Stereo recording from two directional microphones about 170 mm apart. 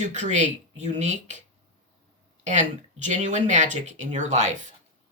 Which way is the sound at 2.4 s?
45° right (ahead or behind).